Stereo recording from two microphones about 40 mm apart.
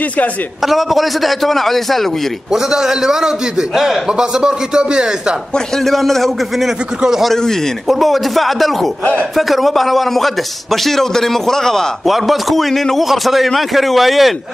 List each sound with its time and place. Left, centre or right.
0.7 s a man's voice: centre
2.5 s a man's voice: centre
5.9 s a man's voice: centre
7.0 s a man's voice: centre
7.9 s a man's voice: centre
12.1 s a man's voice: centre